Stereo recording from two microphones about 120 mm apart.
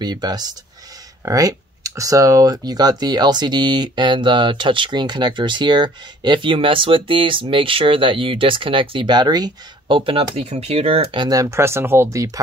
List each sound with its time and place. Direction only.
0.0 s speech: 35° right (ahead or behind)
9.9 s speech: 50° right (ahead or behind)
11.2 s speech: 30° right (ahead or behind)